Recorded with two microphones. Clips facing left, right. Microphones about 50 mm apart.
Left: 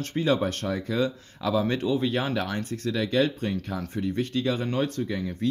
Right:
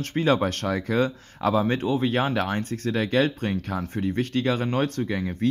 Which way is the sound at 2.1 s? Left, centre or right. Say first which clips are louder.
Right 3 dB; right.